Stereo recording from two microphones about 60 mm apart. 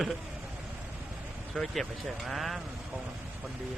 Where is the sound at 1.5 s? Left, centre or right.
Centre.